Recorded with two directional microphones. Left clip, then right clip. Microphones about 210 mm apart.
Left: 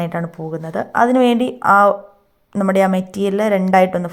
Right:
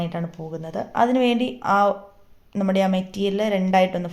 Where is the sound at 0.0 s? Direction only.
25° left (ahead or behind).